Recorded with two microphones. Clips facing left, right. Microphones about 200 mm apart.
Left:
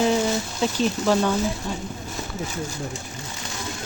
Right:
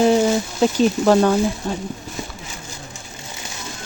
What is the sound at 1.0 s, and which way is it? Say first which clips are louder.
Speech: right 6 dB; 50° right (ahead or behind).